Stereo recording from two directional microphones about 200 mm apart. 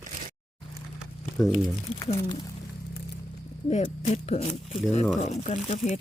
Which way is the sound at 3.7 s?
35° left (ahead or behind).